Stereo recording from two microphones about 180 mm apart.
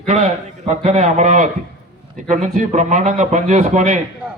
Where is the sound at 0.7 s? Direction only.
40° right (ahead or behind).